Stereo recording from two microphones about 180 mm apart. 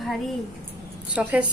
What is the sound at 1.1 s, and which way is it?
Speech, 5° right (ahead or behind).